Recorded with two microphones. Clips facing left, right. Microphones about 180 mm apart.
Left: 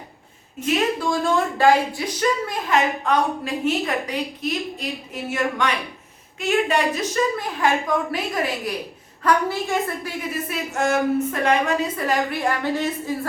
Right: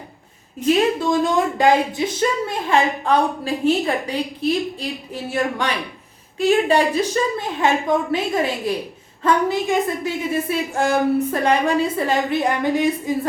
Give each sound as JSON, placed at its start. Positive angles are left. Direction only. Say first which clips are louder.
{"t": 0.9, "sound": "a woman's voice", "louder": "right 3 dB", "side_deg": -20}